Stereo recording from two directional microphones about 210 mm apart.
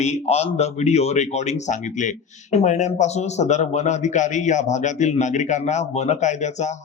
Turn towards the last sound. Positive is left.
turn(degrees=35)  # may be behind; listen again after turning